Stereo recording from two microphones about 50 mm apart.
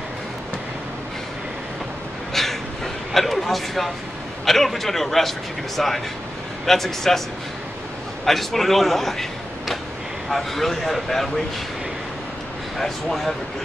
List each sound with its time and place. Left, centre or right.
2.3 s a sound: centre
4.5 s speech: centre
8.3 s a man's voice: centre
12.7 s speech: centre